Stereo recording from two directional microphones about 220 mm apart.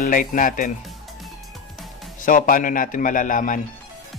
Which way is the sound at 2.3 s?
35° left (ahead or behind).